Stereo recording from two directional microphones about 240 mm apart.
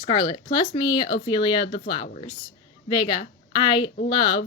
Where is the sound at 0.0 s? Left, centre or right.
Centre.